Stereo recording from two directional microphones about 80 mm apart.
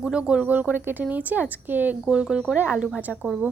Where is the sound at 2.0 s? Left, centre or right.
Centre.